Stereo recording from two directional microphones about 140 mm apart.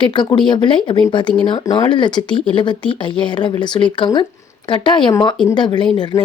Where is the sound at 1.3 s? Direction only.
5° left (ahead or behind).